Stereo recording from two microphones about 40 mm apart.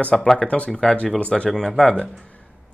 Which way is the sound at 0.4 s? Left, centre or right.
Left.